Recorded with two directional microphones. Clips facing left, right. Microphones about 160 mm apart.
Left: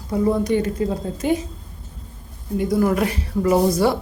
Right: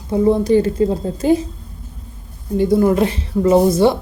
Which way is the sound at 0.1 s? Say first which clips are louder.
Right 5 dB; 30° right (ahead or behind).